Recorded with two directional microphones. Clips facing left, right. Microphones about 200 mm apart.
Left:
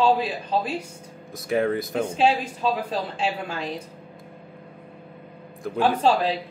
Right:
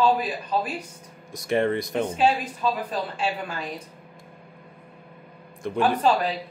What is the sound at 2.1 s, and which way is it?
Speech, 30° left (ahead or behind).